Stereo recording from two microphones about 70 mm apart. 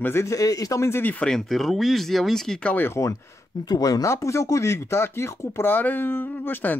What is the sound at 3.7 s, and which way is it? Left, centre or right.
Speech, left.